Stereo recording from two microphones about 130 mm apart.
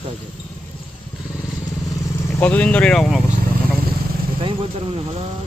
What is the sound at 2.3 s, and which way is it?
Speech, 10° left (ahead or behind).